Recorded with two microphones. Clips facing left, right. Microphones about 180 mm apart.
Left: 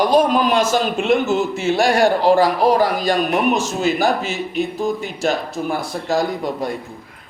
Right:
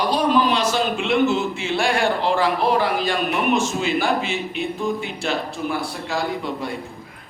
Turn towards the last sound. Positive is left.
turn(degrees=40)  # may be behind; listen again after turning